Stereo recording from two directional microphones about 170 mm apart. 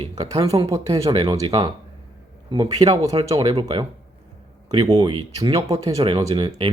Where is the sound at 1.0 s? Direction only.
35° right (ahead or behind).